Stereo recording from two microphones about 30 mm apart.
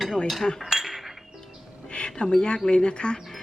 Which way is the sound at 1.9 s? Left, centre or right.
Left.